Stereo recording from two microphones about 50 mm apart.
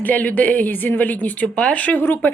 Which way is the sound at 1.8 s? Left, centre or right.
Left.